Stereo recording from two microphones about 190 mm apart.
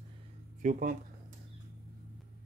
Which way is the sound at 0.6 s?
40° right (ahead or behind).